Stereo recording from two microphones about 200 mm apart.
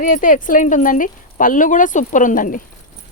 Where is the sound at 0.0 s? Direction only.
40° left (ahead or behind).